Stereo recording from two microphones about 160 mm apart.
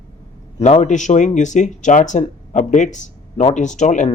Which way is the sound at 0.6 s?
50° left (ahead or behind).